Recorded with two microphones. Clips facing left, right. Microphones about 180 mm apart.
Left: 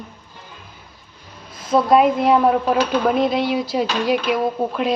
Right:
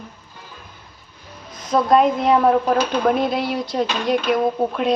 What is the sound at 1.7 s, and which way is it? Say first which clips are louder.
Speech: left 1 dB; 5° left (ahead or behind).